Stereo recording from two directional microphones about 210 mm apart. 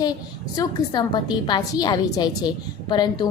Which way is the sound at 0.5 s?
20° left (ahead or behind).